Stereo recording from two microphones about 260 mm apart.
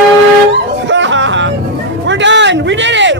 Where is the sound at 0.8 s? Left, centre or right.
Right.